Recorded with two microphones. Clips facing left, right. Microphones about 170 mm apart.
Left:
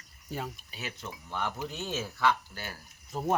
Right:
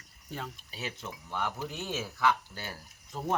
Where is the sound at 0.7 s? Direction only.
30° right (ahead or behind).